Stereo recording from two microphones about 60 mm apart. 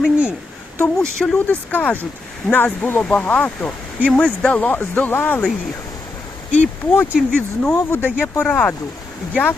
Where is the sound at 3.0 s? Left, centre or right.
Left.